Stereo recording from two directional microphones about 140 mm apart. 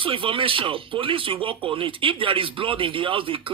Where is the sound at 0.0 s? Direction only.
40° right (ahead or behind).